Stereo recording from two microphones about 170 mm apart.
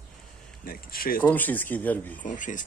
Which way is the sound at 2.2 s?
50° left (ahead or behind).